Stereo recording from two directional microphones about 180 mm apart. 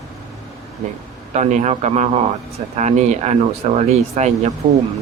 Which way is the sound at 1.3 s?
40° right (ahead or behind).